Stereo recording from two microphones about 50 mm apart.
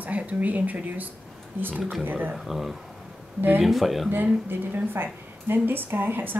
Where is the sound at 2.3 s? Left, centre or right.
Centre.